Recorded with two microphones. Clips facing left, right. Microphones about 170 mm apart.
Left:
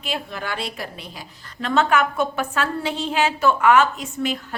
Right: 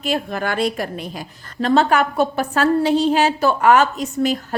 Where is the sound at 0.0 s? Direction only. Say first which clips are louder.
Right 7 dB; 45° right (ahead or behind).